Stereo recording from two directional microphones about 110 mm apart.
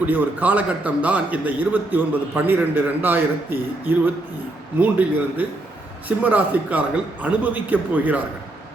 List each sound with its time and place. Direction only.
0.0 s a man's voice: 15° right (ahead or behind)